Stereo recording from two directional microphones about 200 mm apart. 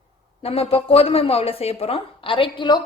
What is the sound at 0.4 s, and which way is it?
A woman's voice, 30° left (ahead or behind).